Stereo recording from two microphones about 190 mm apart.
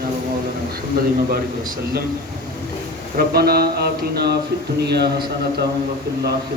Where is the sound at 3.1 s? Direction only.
55° right (ahead or behind).